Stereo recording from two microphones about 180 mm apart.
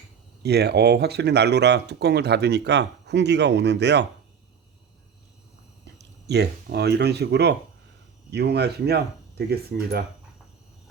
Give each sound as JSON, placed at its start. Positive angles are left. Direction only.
{"t": 0.4, "sound": "speech", "side_deg": -65}
{"t": 5.8, "sound": "speech", "side_deg": -70}